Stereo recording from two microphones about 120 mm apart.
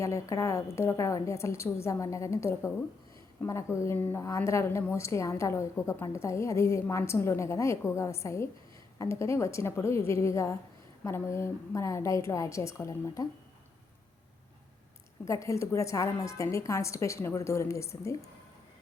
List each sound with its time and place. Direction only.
0.0 s a woman's voice: 25° left (ahead or behind)
15.2 s a woman's voice: 25° left (ahead or behind)